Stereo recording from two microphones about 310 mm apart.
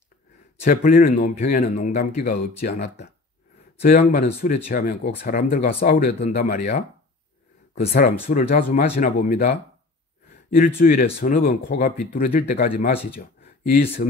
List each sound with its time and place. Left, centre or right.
0.7 s speech: left
7.8 s speech: left
10.8 s speech: left
13.4 s a sound: left